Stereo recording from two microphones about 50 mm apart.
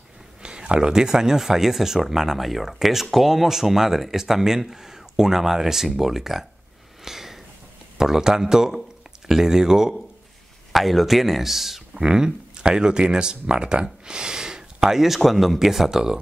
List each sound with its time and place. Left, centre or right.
0.4 s speech: centre
7.1 s a sound: centre
8.0 s speech: centre
12.0 s speech: centre